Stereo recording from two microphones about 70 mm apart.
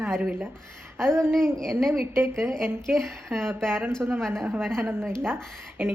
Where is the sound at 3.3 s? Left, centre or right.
Right.